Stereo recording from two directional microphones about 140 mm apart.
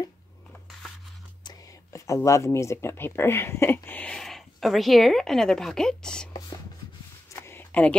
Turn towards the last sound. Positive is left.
turn(degrees=15)  # may be behind; listen again after turning